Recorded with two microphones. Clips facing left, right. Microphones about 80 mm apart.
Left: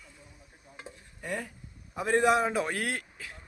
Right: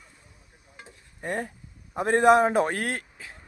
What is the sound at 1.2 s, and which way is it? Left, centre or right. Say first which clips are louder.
A man's voice: right 5 dB; right.